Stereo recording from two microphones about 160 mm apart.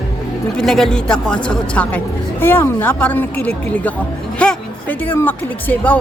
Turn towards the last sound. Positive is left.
turn(degrees=10)  # may be behind; listen again after turning